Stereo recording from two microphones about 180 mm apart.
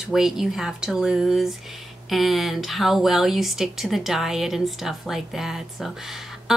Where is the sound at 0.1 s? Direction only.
Centre (ahead or behind).